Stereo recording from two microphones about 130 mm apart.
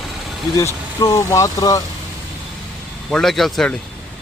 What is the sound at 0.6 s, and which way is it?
Speech, 25° left (ahead or behind).